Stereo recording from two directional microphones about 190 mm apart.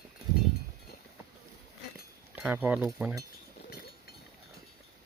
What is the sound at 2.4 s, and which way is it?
Speech, 10° right (ahead or behind).